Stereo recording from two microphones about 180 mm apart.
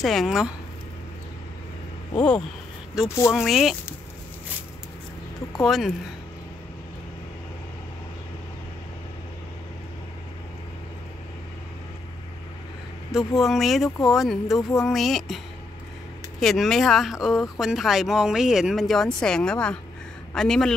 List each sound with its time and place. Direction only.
0.0 s speech: centre (ahead or behind)
2.1 s speech: 5° left (ahead or behind)
5.6 s speech: centre (ahead or behind)
13.1 s speech: centre (ahead or behind)